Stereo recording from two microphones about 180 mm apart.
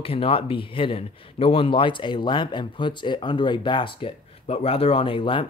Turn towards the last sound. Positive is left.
turn(degrees=30)  # may be behind; listen again after turning